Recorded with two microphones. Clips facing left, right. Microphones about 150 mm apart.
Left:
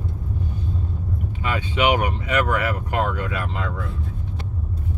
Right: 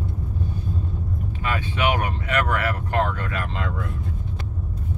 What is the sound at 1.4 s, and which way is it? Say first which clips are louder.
Speech: left 3 dB; 15° left (ahead or behind).